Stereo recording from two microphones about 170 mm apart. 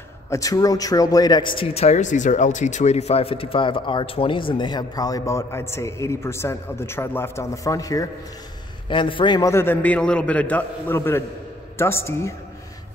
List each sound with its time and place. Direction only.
0.3 s a man's voice: 20° left (ahead or behind)